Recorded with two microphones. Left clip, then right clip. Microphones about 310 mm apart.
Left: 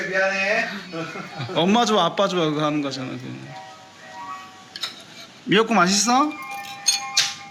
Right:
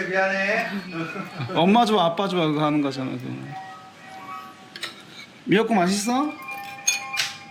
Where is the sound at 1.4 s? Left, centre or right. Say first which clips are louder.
Right 1 dB; centre.